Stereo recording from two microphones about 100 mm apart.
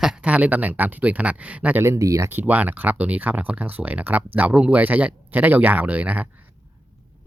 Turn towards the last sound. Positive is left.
turn(degrees=-15)  # may be behind; listen again after turning